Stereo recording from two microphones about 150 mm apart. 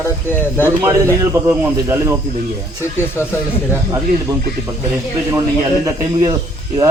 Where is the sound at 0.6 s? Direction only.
15° right (ahead or behind).